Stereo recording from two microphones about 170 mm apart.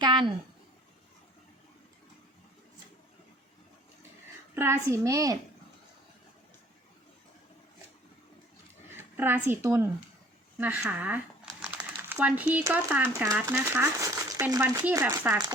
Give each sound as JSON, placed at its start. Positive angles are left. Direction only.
{"t": 0.0, "sound": "a woman's voice", "side_deg": -25}
{"t": 4.5, "sound": "a woman's voice", "side_deg": -15}
{"t": 9.0, "sound": "speech", "side_deg": -10}